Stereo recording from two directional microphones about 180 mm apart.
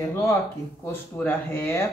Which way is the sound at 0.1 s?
15° left (ahead or behind).